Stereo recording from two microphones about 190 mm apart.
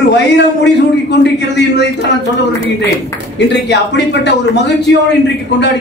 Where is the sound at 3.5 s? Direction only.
65° left (ahead or behind).